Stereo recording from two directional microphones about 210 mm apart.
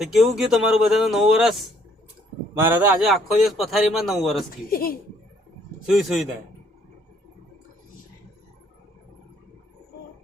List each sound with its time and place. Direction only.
0.0 s a man's voice: centre (ahead or behind)
4.7 s speech: 45° left (ahead or behind)
5.8 s a man's voice: centre (ahead or behind)